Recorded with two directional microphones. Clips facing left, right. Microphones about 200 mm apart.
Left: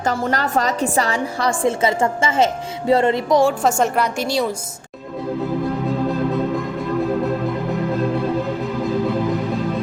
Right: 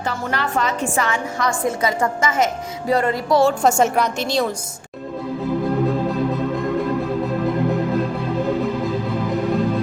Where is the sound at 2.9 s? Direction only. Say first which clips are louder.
Left 3 dB; 25° left (ahead or behind).